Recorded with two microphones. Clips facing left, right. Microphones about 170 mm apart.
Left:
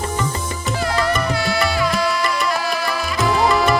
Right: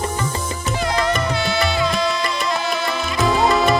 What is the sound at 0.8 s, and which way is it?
Music, 20° right (ahead or behind).